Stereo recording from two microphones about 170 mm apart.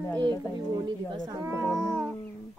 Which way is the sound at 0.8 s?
25° right (ahead or behind).